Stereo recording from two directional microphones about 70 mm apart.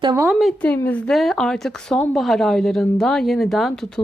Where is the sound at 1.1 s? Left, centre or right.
Centre.